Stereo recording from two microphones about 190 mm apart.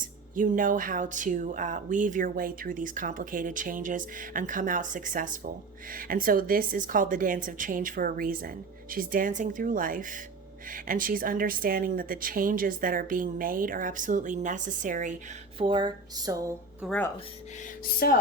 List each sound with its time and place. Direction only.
0.3 s speech: 45° right (ahead or behind)
15.5 s a sound: 25° right (ahead or behind)
16.8 s speech: centre (ahead or behind)
18.0 s speech: 50° left (ahead or behind)